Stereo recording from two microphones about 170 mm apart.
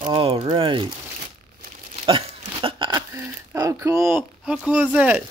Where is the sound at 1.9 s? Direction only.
30° right (ahead or behind).